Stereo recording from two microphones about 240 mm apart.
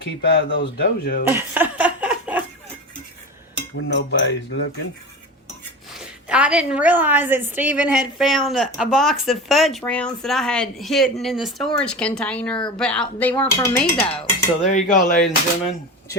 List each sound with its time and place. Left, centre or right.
0.0 s speech: left
1.3 s a sound: centre
3.5 s cutlery: left
6.2 s a woman's voice: centre
14.7 s speech: left